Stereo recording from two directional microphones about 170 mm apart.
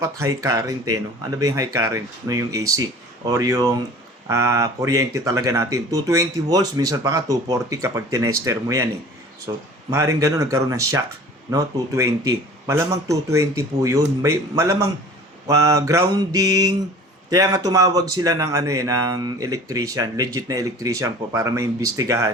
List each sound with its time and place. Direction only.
0.0 s speech: 20° right (ahead or behind)